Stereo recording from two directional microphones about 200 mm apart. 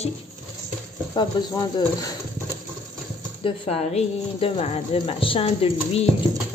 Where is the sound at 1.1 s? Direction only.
20° left (ahead or behind).